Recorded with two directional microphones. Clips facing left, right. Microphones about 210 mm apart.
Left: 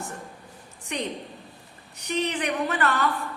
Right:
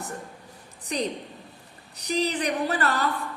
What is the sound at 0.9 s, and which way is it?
A woman's voice, 35° right (ahead or behind).